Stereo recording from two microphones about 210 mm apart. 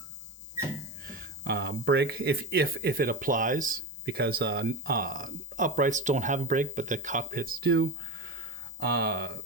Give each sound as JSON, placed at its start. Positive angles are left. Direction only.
{"t": 1.0, "sound": "speech", "side_deg": -50}